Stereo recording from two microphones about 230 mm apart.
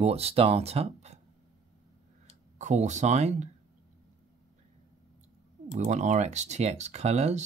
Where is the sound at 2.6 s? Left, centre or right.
Right.